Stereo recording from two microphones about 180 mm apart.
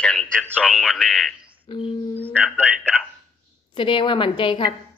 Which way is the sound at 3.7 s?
25° left (ahead or behind).